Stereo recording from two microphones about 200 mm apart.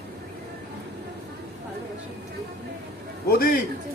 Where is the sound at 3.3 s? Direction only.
45° left (ahead or behind).